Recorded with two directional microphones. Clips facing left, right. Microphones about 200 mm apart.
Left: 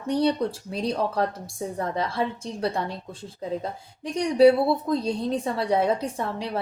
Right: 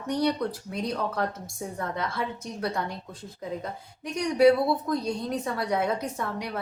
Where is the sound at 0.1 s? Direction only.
30° left (ahead or behind).